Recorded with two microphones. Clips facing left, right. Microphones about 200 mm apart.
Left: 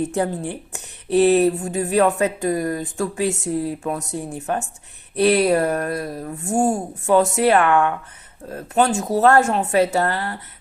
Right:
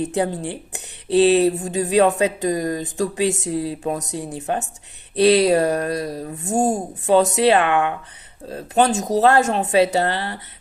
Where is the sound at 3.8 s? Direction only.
40° right (ahead or behind).